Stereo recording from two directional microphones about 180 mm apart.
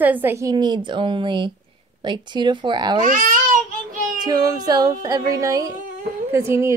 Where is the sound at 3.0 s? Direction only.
50° right (ahead or behind).